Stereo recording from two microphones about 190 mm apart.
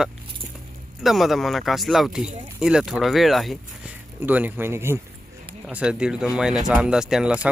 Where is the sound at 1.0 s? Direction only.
Centre (ahead or behind).